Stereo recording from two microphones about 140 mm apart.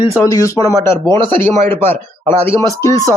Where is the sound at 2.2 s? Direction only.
50° right (ahead or behind).